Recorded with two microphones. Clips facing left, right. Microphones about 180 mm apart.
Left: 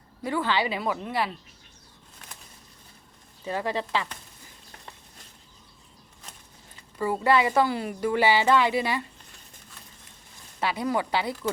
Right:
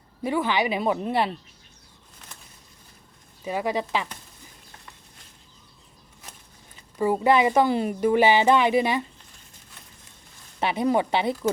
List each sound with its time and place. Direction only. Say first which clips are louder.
0.2 s speech: right 2 dB; 15° right (ahead or behind)
3.4 s speech: right 3 dB; 15° right (ahead or behind)
7.0 s speech: right 3 dB; 15° right (ahead or behind)
10.6 s speech: right 4 dB; 20° right (ahead or behind)